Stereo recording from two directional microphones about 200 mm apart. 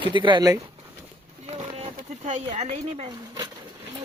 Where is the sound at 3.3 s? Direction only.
15° right (ahead or behind).